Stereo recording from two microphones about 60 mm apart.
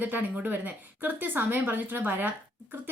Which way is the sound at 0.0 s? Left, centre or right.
Right.